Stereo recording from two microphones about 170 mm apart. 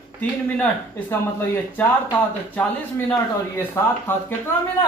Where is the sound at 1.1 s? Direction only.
15° left (ahead or behind).